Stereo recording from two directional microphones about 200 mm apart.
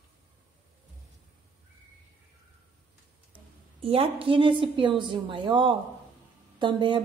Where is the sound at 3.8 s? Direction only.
30° right (ahead or behind).